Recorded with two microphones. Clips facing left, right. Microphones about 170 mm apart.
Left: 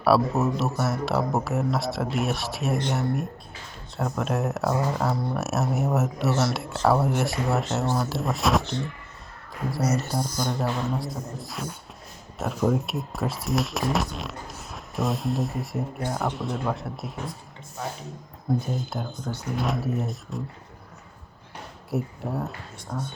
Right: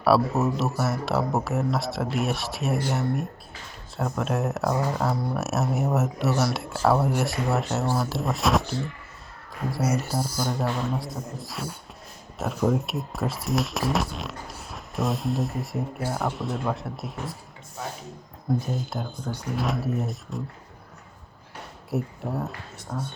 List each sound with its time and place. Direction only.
0.0 s speech: centre (ahead or behind)
18.6 s speech: centre (ahead or behind)
19.5 s speech: centre (ahead or behind)
21.8 s speech: centre (ahead or behind)